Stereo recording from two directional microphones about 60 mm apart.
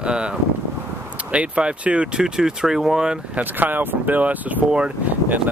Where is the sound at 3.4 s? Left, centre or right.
Right.